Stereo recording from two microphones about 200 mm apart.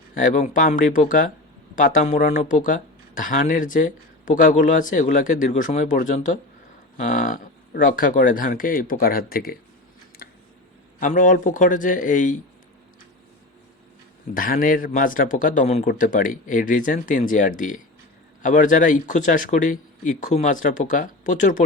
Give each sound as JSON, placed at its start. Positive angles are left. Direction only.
{"t": 0.1, "sound": "speech", "side_deg": 40}
{"t": 10.2, "sound": "a sound", "side_deg": 45}
{"t": 11.0, "sound": "speech", "side_deg": 40}
{"t": 14.3, "sound": "speech", "side_deg": 45}